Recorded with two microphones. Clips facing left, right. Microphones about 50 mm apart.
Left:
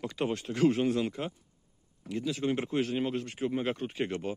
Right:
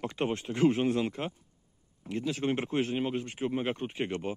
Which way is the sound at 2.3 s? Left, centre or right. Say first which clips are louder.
Even; right.